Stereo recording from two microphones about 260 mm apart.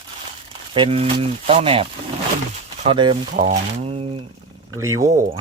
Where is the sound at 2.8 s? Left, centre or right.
Centre.